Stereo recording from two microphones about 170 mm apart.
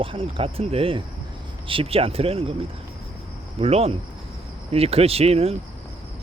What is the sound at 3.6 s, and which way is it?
Speech, 35° right (ahead or behind).